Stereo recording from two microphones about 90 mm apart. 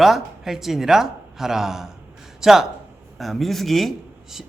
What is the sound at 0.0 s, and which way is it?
A man's voice, 5° right (ahead or behind).